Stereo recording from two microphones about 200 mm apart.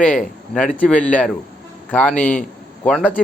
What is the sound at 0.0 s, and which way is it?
A man's voice, 5° left (ahead or behind).